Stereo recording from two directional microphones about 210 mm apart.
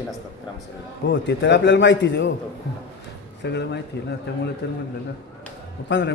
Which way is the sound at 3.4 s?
55° left (ahead or behind).